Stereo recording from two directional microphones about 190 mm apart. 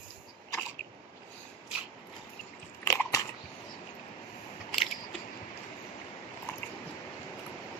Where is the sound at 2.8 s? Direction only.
15° left (ahead or behind).